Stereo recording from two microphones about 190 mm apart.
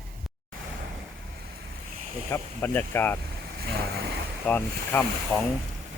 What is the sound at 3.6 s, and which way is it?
Vehicle, 55° right (ahead or behind).